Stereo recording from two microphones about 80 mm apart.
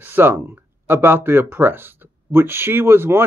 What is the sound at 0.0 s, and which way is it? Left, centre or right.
Speech, right.